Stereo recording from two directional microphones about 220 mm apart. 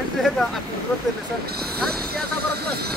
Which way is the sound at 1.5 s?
45° right (ahead or behind).